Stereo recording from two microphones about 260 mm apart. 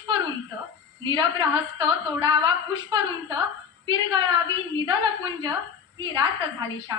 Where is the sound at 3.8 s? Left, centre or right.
Centre.